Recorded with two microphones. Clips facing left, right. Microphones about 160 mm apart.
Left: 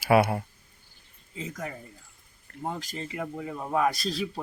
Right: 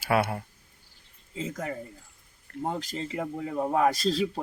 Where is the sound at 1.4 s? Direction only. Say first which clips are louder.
Right 3 dB; 30° right (ahead or behind).